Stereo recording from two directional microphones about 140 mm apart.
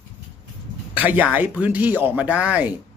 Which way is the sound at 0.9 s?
10° right (ahead or behind).